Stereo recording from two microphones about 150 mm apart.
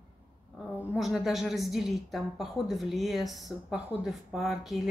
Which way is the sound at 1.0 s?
Centre (ahead or behind).